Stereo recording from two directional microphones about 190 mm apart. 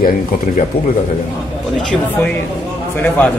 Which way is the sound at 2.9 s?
10° left (ahead or behind).